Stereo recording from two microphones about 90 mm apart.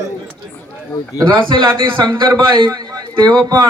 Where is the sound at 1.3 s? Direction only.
65° right (ahead or behind).